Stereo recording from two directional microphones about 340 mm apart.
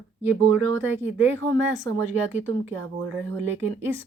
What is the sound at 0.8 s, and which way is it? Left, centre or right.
Speech, centre.